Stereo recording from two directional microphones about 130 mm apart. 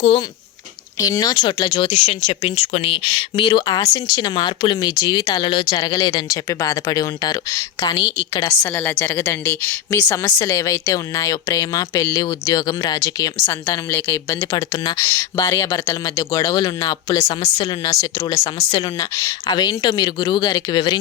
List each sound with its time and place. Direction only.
0.0 s speech: 45° left (ahead or behind)
0.9 s speech: 25° left (ahead or behind)
8.7 s speech: 15° left (ahead or behind)
14.5 s speech: 30° left (ahead or behind)
15.0 s speech: 20° left (ahead or behind)